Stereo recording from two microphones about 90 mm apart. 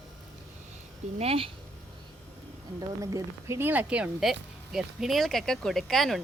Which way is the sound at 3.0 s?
40° right (ahead or behind).